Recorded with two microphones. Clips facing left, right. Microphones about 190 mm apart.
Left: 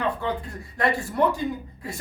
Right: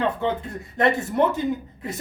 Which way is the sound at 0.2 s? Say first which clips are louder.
Right 3 dB; 25° right (ahead or behind).